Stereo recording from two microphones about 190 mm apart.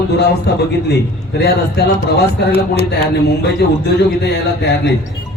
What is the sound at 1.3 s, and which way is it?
Speech, 60° left (ahead or behind).